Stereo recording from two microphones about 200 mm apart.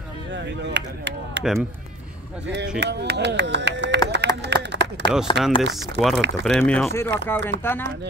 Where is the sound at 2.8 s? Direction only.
55° right (ahead or behind).